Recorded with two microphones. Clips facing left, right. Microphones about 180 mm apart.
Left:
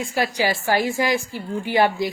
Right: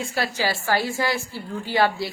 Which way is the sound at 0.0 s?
15° left (ahead or behind).